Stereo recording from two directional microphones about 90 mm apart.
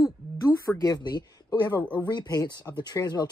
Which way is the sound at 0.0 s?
40° left (ahead or behind).